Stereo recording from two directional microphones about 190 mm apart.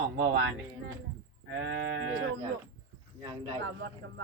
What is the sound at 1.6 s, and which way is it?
Speech, 70° right (ahead or behind).